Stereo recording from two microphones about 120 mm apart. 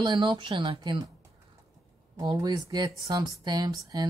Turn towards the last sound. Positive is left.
turn(degrees=-35)  # may be behind; listen again after turning